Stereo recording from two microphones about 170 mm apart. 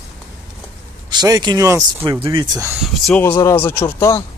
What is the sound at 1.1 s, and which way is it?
Speech, 25° right (ahead or behind).